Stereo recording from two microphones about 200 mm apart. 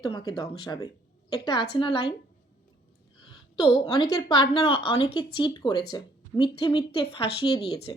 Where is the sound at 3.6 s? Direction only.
25° left (ahead or behind).